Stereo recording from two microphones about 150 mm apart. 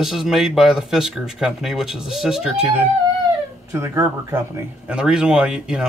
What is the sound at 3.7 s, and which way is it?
Speech, 20° right (ahead or behind).